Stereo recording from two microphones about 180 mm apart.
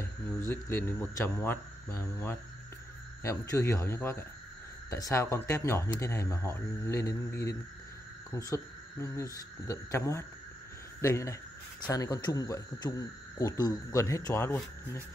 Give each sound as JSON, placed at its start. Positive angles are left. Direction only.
{"t": 0.0, "sound": "speech", "side_deg": 15}
{"t": 9.0, "sound": "speech", "side_deg": 15}